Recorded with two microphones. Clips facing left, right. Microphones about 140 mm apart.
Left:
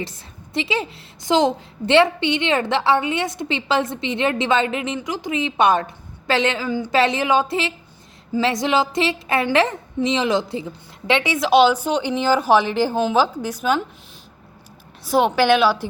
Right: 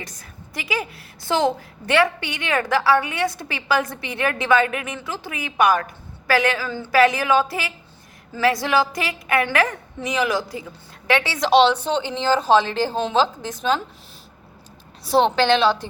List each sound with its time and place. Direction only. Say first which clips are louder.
0.0 s a woman's voice: left 7 dB; 25° left (ahead or behind)
11.3 s speech: left 1 dB; 5° left (ahead or behind)
13.0 s a woman's voice: even; 5° left (ahead or behind)
15.0 s speech: left 1 dB; 5° left (ahead or behind)